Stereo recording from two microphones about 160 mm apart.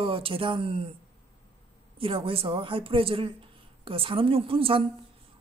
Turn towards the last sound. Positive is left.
turn(degrees=-35)  # may be behind; listen again after turning